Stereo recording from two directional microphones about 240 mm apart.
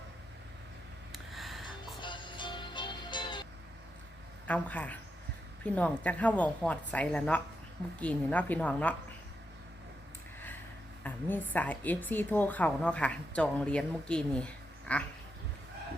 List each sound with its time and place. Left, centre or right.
1.1 s music: centre
2.0 s music: centre
4.4 s a woman's voice: centre
11.0 s a woman's voice: centre